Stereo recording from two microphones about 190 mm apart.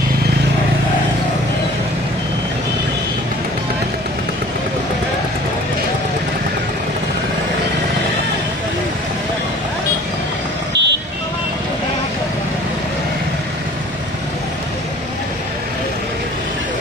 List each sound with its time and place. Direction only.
10.7 s vehicle: 65° right (ahead or behind)